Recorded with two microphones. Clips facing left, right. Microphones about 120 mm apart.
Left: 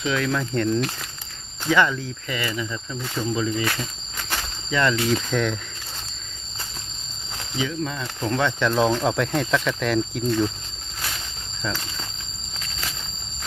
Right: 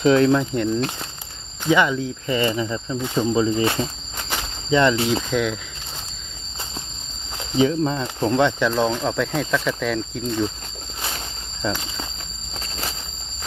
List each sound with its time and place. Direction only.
0.0 s speech: 40° right (ahead or behind)
0.3 s speech: 20° right (ahead or behind)
4.3 s cricket: 20° right (ahead or behind)
5.3 s speech: 5° right (ahead or behind)
7.3 s speech: 35° right (ahead or behind)
8.3 s speech: 15° right (ahead or behind)
8.7 s speech: 5° left (ahead or behind)
12.5 s a sound: 30° right (ahead or behind)